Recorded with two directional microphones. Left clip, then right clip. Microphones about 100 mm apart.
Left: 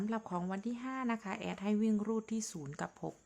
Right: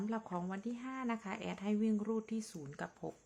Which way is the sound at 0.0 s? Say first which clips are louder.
Left 2 dB; 35° left (ahead or behind).